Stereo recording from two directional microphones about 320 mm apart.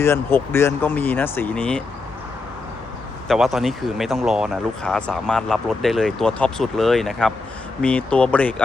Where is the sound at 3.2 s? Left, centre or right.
Centre.